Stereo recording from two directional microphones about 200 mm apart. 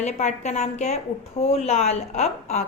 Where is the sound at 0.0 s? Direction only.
35° left (ahead or behind).